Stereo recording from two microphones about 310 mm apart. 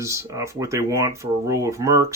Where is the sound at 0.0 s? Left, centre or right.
Centre.